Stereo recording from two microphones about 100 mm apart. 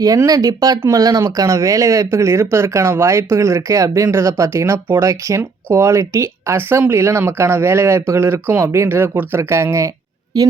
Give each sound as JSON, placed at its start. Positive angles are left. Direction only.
{"t": 0.3, "sound": "speech", "side_deg": -40}
{"t": 10.3, "sound": "speech", "side_deg": -40}